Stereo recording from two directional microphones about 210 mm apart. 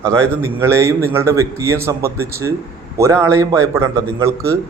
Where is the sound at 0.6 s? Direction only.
10° right (ahead or behind).